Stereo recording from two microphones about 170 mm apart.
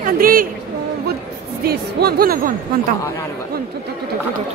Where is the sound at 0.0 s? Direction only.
55° right (ahead or behind).